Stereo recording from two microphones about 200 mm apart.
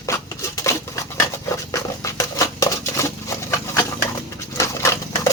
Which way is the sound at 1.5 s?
15° left (ahead or behind).